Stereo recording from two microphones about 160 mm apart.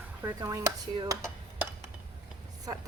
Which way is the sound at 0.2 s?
20° right (ahead or behind).